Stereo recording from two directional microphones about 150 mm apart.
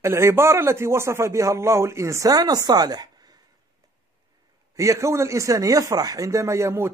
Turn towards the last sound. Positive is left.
turn(degrees=-15)  # may be behind; listen again after turning